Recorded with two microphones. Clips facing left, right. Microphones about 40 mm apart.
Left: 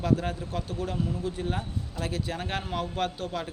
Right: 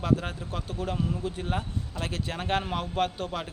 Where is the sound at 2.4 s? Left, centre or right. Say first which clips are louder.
Right 3 dB; right.